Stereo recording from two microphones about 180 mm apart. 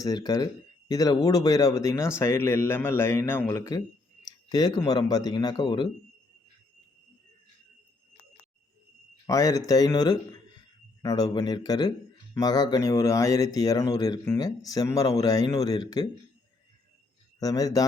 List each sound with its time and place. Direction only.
0.0 s speech: 20° left (ahead or behind)
9.2 s speech: 20° left (ahead or behind)
17.4 s speech: 20° left (ahead or behind)